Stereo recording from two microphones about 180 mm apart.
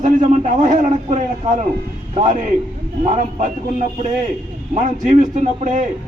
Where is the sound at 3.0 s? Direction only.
40° right (ahead or behind).